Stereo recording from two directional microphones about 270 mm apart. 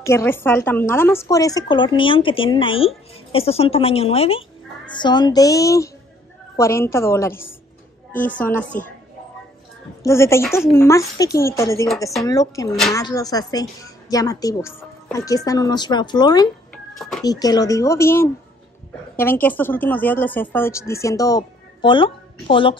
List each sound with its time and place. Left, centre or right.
0.0 s a woman's voice: centre
10.0 s a woman's voice: centre
16.7 s a sound: centre
17.2 s a woman's voice: centre